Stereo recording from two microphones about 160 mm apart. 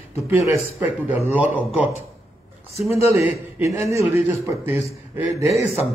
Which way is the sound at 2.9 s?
10° right (ahead or behind).